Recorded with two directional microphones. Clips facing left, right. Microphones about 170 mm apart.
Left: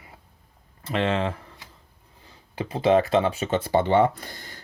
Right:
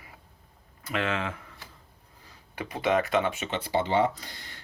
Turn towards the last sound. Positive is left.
turn(degrees=50)  # may be behind; listen again after turning